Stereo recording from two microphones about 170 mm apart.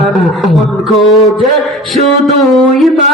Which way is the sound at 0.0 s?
Centre (ahead or behind).